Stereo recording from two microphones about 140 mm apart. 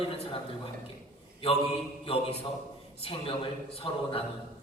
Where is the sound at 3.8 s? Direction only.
40° left (ahead or behind).